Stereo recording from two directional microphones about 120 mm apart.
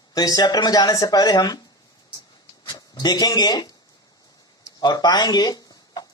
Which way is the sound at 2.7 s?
35° left (ahead or behind).